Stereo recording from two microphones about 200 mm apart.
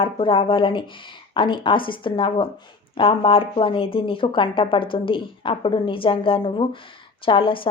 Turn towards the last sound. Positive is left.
turn(degrees=25)  # may be behind; listen again after turning